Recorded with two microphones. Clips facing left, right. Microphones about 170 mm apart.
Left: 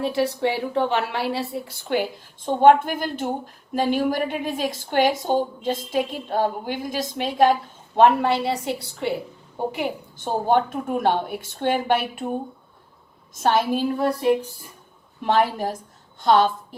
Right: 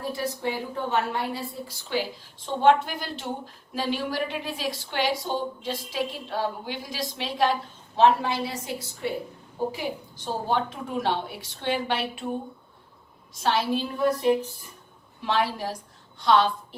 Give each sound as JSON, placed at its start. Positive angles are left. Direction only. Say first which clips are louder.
{"t": 0.0, "sound": "a woman's voice", "louder": "left 7 dB", "side_deg": 75}
{"t": 7.9, "sound": "a woman's voice", "louder": "left 4 dB", "side_deg": 60}
{"t": 13.4, "sound": "a woman's voice", "louder": "left 4 dB", "side_deg": 50}
{"t": 15.2, "sound": "a woman's voice", "louder": "left 5 dB", "side_deg": 50}